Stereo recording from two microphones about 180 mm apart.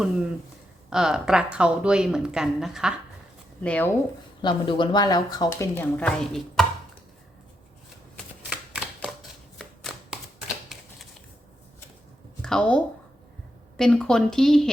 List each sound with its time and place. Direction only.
0.9 s a woman's voice: 5° right (ahead or behind)
3.6 s speech: 10° left (ahead or behind)
4.4 s speech: 25° left (ahead or behind)
6.0 s speech: 5° left (ahead or behind)
8.4 s typewriter: 5° right (ahead or behind)
9.6 s shuffling cards: centre (ahead or behind)
12.4 s a woman's voice: 5° left (ahead or behind)